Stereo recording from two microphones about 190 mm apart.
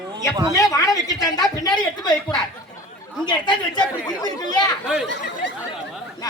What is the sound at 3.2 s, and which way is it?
A man's voice, 20° left (ahead or behind).